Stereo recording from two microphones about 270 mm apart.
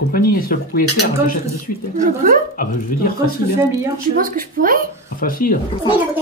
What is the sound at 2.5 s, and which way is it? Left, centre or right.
Speech, left.